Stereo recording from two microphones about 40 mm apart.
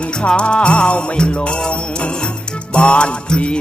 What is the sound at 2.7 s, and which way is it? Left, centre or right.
Music, left.